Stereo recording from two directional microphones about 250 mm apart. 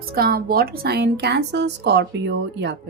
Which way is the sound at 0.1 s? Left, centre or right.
Right.